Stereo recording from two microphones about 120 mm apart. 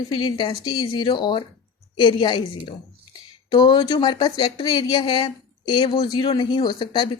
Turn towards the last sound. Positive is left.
turn(degrees=40)  # may be behind; listen again after turning